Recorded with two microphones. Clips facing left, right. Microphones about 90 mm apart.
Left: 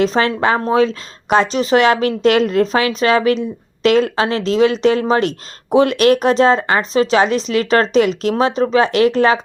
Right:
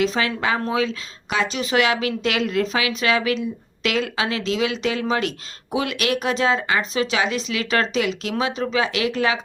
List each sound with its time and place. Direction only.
0.0 s a woman's voice: 40° left (ahead or behind)